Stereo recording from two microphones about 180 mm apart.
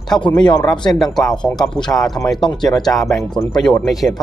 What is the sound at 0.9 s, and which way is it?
Speech, centre (ahead or behind).